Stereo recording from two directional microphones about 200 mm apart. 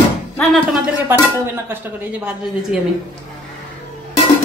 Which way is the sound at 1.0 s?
10° right (ahead or behind).